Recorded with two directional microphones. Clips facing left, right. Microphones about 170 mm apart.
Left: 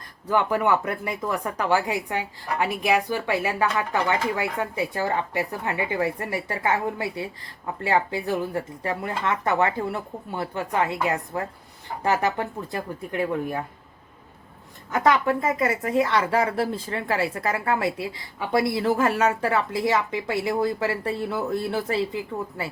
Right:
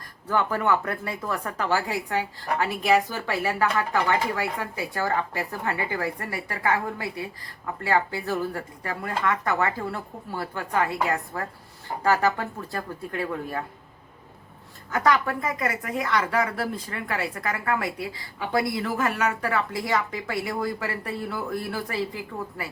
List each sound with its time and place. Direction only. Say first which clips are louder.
0.3 s a woman's voice: left 2 dB; 15° left (ahead or behind)
14.9 s a woman's voice: left 2 dB; 20° left (ahead or behind)